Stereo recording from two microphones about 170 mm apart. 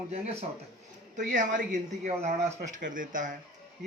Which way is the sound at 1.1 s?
50° right (ahead or behind).